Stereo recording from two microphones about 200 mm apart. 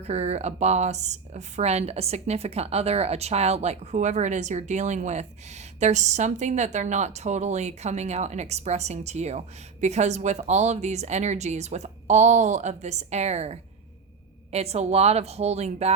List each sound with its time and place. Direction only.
0.0 s a woman's voice: 35° right (ahead or behind)